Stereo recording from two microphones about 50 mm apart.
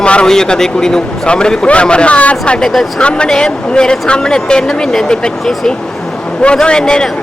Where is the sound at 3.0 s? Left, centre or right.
Centre.